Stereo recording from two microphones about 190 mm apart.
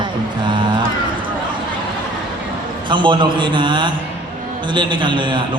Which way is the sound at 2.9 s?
25° right (ahead or behind).